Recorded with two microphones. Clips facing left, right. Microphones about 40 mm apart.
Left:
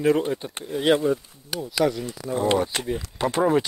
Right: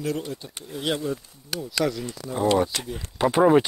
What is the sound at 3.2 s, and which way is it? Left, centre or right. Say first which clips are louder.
Speech: right 4 dB; centre.